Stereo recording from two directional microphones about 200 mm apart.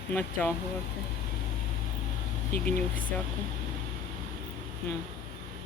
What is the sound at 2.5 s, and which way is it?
Speech, 45° left (ahead or behind).